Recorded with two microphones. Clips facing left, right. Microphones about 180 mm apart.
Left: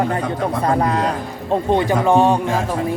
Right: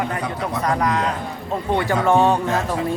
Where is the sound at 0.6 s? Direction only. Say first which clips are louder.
Left 2 dB; 30° left (ahead or behind).